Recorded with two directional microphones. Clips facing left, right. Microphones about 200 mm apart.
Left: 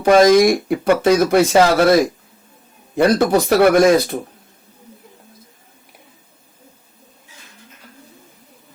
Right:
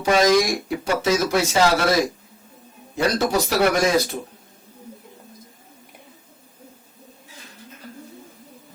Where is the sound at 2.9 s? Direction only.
55° left (ahead or behind).